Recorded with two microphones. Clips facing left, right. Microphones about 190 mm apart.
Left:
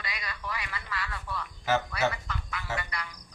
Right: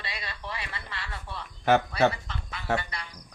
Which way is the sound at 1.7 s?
60° right (ahead or behind).